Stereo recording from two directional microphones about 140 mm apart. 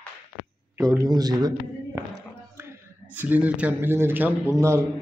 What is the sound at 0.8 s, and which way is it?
Speech, 15° right (ahead or behind).